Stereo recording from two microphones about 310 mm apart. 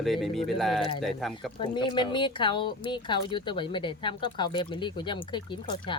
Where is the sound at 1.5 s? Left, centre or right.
Centre.